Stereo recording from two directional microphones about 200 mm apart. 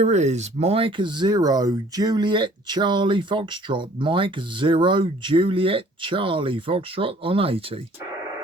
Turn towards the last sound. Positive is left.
turn(degrees=-30)  # may be behind; listen again after turning